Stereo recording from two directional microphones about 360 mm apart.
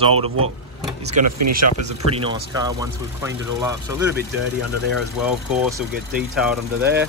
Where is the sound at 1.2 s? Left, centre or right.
Right.